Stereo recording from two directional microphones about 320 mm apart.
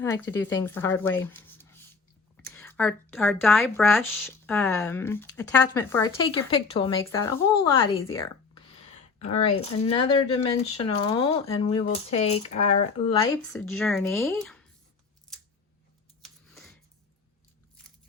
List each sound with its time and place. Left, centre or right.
0.0 s speech: centre
1.2 s a sound: centre
2.3 s speech: centre
9.2 s speech: centre
13.5 s speech: centre
16.2 s scissors: centre